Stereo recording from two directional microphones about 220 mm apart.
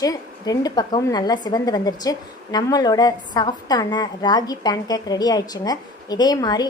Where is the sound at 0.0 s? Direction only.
15° left (ahead or behind).